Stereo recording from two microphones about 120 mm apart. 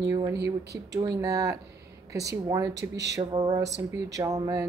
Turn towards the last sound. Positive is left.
turn(degrees=-30)  # may be behind; listen again after turning